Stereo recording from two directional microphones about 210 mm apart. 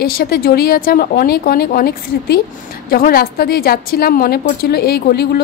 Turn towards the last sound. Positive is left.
turn(degrees=50)  # may be behind; listen again after turning